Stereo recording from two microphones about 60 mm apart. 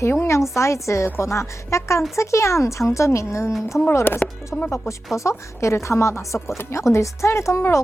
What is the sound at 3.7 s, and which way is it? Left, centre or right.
Chopping, left.